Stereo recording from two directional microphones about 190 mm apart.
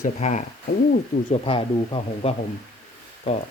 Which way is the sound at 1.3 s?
30° left (ahead or behind).